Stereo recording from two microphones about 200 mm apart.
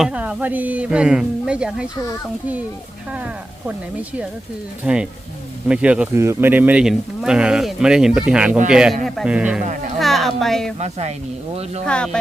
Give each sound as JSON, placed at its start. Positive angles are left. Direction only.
{"t": 0.0, "sound": "speech", "side_deg": -5}
{"t": 4.8, "sound": "speech", "side_deg": -5}
{"t": 10.8, "sound": "speech", "side_deg": -35}
{"t": 11.9, "sound": "speech", "side_deg": 5}